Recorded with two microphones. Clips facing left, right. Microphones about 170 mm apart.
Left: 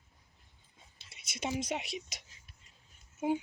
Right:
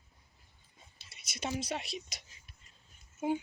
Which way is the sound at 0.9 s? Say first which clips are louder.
Left 2 dB; 25° left (ahead or behind).